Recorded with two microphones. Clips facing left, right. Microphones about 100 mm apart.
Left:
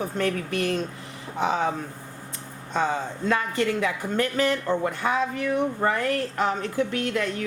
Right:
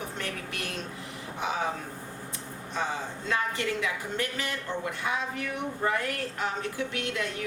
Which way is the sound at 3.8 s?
45° left (ahead or behind).